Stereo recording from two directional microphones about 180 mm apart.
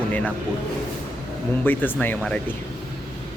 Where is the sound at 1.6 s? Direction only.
10° left (ahead or behind).